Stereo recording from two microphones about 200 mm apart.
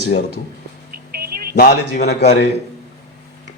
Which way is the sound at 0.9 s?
50° right (ahead or behind).